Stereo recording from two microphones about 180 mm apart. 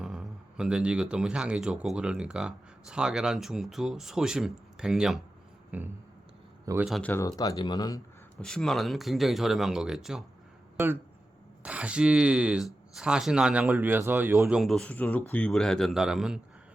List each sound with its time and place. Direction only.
0.0 s speech: 5° right (ahead or behind)
5.7 s a sound: 10° right (ahead or behind)
6.8 s speech: centre (ahead or behind)
7.1 s speech: 20° left (ahead or behind)
8.4 s speech: 5° left (ahead or behind)
11.6 s speech: 5° right (ahead or behind)